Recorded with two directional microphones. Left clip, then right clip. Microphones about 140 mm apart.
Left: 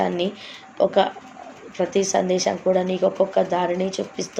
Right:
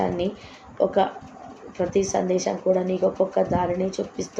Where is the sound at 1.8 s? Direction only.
20° left (ahead or behind).